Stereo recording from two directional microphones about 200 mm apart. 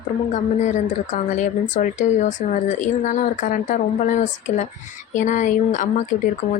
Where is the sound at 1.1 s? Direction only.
40° left (ahead or behind).